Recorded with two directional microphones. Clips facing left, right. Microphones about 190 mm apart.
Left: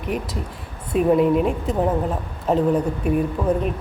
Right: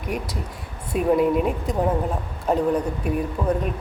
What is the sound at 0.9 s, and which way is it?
Speech, centre (ahead or behind).